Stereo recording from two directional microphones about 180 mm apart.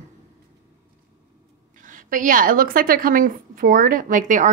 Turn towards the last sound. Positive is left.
turn(degrees=-45)  # may be behind; listen again after turning